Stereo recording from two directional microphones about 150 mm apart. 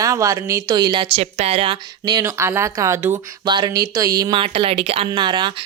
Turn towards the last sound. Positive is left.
turn(degrees=-30)  # may be behind; listen again after turning